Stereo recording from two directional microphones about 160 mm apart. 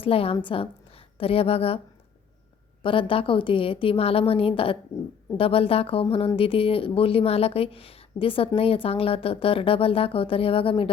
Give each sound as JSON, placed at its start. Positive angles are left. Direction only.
{"t": 0.0, "sound": "a woman's voice", "side_deg": 35}
{"t": 2.8, "sound": "speech", "side_deg": 35}